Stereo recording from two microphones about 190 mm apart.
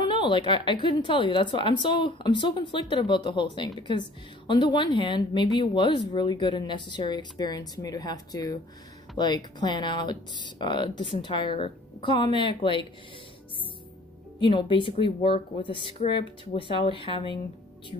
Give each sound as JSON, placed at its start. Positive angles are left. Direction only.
{"t": 0.0, "sound": "speech", "side_deg": 25}
{"t": 14.4, "sound": "speech", "side_deg": 25}